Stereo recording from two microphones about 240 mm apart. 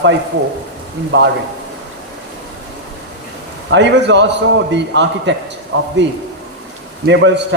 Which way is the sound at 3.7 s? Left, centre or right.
Right.